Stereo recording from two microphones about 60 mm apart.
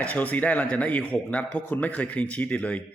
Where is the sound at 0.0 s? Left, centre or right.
Left.